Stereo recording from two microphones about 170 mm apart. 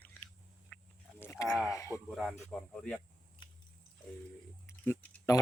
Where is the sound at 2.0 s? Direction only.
Centre (ahead or behind).